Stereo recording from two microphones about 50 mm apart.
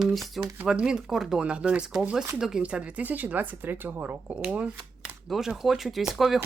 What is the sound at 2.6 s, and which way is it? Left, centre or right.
Speech, right.